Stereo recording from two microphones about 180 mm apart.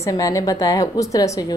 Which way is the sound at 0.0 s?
20° left (ahead or behind).